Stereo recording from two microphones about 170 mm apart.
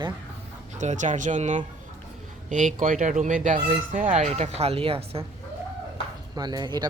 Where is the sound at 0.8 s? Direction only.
45° right (ahead or behind).